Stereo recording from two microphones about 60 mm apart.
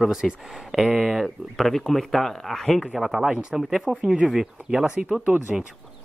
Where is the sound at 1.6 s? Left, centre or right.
Centre.